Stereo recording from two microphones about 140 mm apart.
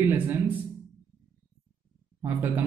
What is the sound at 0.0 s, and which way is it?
Speech, 15° right (ahead or behind).